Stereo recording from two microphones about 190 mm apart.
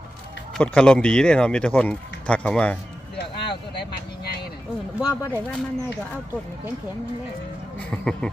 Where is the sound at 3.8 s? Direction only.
55° left (ahead or behind).